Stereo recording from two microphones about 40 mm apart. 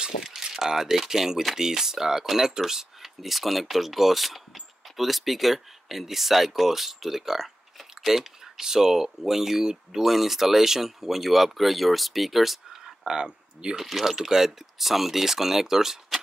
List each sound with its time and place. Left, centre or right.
0.2 s speech: centre
13.0 s speech: centre
13.7 s speech: centre